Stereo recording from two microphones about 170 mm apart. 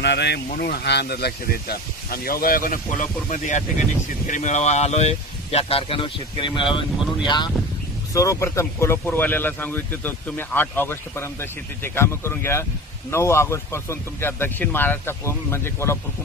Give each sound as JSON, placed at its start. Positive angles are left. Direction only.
{"t": 0.0, "sound": "speech", "side_deg": 80}
{"t": 0.5, "sound": "speech", "side_deg": 65}